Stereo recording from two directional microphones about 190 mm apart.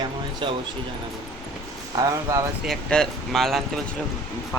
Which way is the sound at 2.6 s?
Centre (ahead or behind).